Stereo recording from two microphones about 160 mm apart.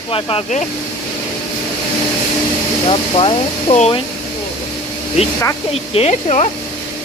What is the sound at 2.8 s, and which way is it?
Speech, 35° left (ahead or behind).